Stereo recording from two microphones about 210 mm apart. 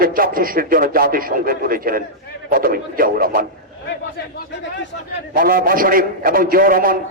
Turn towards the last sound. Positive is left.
turn(degrees=-40)  # may be behind; listen again after turning